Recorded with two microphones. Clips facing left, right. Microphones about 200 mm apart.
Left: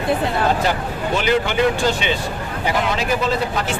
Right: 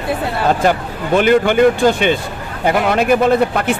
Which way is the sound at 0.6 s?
50° right (ahead or behind).